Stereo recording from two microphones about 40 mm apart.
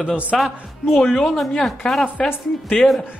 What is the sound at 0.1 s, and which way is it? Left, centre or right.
Speech, right.